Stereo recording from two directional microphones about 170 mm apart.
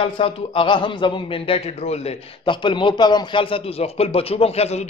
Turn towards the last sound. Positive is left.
turn(degrees=40)  # may be behind; listen again after turning